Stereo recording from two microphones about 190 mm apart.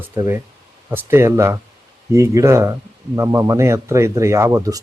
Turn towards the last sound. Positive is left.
turn(degrees=-20)  # may be behind; listen again after turning